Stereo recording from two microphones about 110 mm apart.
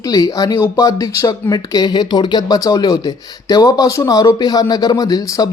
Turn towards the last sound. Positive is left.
turn(degrees=35)  # may be behind; listen again after turning